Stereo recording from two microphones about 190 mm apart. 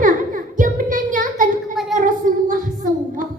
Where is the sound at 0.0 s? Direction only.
45° right (ahead or behind).